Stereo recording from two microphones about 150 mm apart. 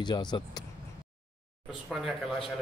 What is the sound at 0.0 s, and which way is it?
Speech, 30° left (ahead or behind).